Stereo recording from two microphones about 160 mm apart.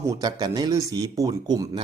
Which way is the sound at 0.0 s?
20° right (ahead or behind).